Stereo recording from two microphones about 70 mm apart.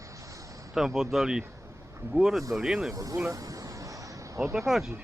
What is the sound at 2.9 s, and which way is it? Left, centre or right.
Speech, right.